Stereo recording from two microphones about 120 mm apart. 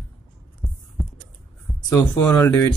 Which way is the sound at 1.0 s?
Centre (ahead or behind).